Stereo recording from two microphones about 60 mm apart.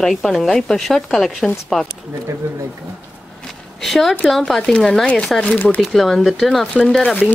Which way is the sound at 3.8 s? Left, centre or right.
Centre.